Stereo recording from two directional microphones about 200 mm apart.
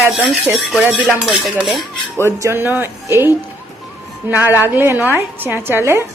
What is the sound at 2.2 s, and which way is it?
A woman's voice, 15° right (ahead or behind).